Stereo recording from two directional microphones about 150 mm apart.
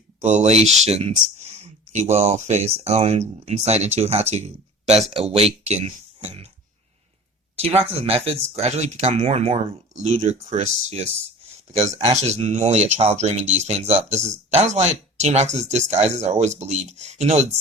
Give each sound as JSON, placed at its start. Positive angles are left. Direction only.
{"t": 0.2, "sound": "speech", "side_deg": -50}
{"t": 7.9, "sound": "speech", "side_deg": -40}